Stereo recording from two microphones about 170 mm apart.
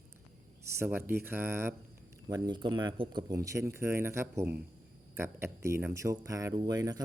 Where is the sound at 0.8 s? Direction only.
10° right (ahead or behind).